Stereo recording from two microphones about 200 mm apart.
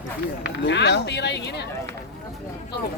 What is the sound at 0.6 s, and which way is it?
Speech, 60° left (ahead or behind).